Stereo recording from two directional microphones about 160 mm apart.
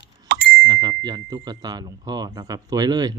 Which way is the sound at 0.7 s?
25° right (ahead or behind).